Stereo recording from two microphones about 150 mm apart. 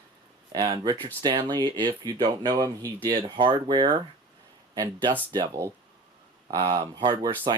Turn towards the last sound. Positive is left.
turn(degrees=-30)  # may be behind; listen again after turning